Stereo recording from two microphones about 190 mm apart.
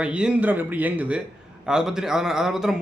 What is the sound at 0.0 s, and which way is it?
A man's voice, 5° right (ahead or behind).